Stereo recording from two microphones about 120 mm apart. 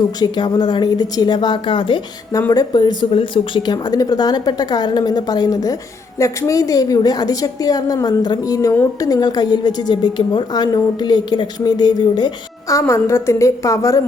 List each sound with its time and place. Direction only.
0.2 s a woman's voice: 35° left (ahead or behind)
12.8 s a woman's voice: 20° left (ahead or behind)